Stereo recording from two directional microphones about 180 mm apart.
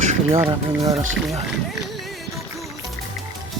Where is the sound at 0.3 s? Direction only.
20° right (ahead or behind).